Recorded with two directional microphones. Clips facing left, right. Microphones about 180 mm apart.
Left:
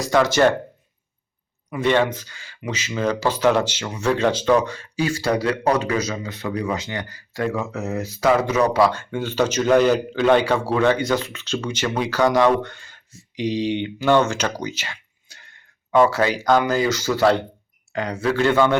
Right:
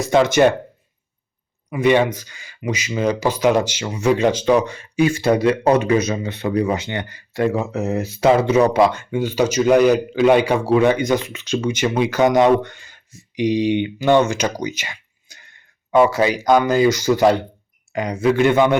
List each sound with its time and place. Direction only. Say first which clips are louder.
0.0 s speech: right 3 dB; 20° right (ahead or behind)
1.7 s speech: right 3 dB; 15° right (ahead or behind)